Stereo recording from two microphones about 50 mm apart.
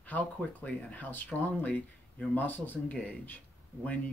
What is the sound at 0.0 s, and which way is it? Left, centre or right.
Speech, left.